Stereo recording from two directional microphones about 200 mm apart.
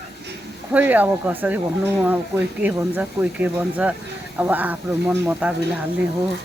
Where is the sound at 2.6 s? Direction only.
10° right (ahead or behind).